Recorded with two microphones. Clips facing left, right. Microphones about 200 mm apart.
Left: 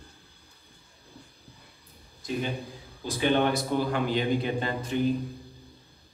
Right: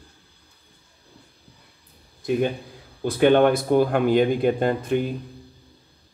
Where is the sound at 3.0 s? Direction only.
55° right (ahead or behind).